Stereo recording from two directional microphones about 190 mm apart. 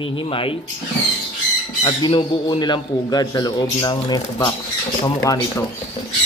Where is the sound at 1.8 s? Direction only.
25° left (ahead or behind).